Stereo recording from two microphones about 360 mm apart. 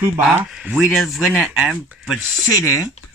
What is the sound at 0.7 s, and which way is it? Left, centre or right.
Speech, centre.